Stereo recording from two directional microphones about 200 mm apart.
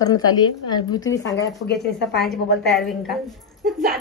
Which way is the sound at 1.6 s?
55° left (ahead or behind).